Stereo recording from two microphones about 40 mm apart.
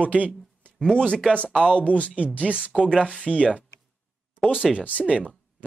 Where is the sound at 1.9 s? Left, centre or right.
Left.